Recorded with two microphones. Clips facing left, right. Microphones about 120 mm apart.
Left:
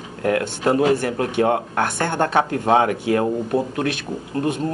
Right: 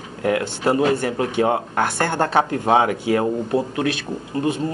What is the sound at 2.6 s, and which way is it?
Speech, 20° right (ahead or behind).